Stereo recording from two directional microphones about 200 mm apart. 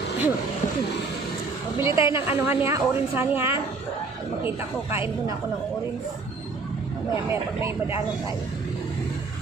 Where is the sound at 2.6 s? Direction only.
10° right (ahead or behind).